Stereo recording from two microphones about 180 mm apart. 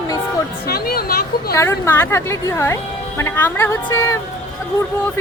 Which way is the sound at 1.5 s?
15° left (ahead or behind).